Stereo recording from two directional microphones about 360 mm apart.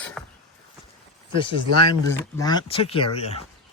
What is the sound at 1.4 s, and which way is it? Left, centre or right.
Speech, centre.